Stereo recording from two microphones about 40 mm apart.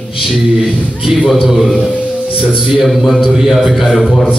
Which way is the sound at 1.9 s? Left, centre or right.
Right.